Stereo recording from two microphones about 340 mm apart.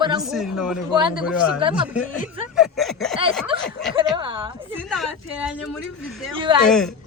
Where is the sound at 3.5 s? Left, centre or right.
Centre.